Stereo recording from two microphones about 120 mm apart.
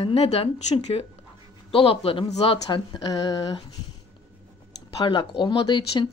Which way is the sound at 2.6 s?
40° left (ahead or behind).